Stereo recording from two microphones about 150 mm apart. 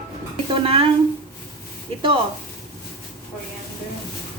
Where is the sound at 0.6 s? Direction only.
35° right (ahead or behind).